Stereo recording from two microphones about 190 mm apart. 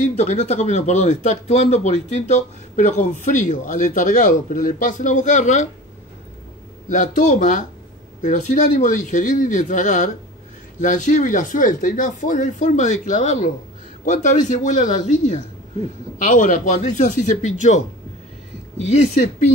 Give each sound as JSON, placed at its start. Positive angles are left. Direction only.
{"t": 0.1, "sound": "speech", "side_deg": 35}
{"t": 6.9, "sound": "speech", "side_deg": 40}